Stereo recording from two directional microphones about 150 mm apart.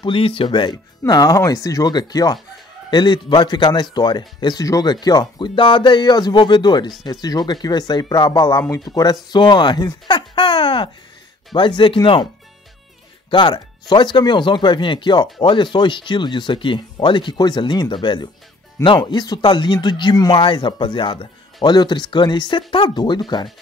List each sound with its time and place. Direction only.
0.0 s speech: 35° left (ahead or behind)
13.3 s speech: 30° left (ahead or behind)